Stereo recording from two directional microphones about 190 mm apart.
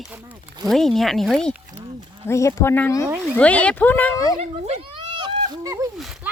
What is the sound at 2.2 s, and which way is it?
Speech, 15° left (ahead or behind).